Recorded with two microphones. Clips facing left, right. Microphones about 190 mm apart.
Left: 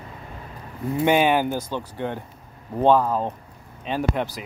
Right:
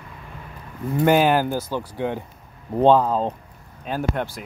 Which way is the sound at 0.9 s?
Centre (ahead or behind).